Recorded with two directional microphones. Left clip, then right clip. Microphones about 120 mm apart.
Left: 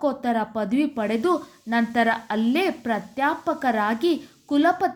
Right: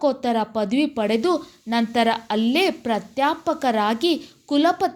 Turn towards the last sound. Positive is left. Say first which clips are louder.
# right 1 dB
turn(degrees=-20)  # may be behind; listen again after turning